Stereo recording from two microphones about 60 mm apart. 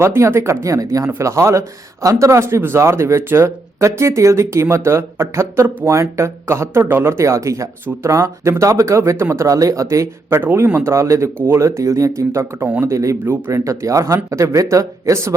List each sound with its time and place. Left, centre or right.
0.0 s a man's voice: right
1.0 s a man's voice: right
9.6 s speech: right
10.2 s a man's voice: right
10.8 s a man's voice: right
11.3 s a man's voice: right
11.8 s speech: right